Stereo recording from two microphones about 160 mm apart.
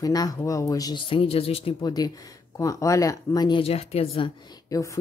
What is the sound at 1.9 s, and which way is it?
Speech, 25° left (ahead or behind).